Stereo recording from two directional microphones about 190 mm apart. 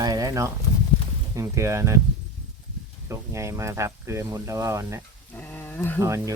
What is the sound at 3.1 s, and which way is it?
Speech, 15° right (ahead or behind).